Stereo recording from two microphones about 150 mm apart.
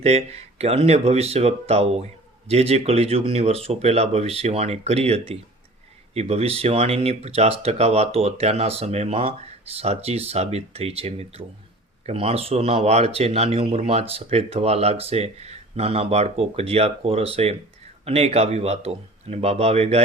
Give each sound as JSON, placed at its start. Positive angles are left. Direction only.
{"t": 0.0, "sound": "speech", "side_deg": -45}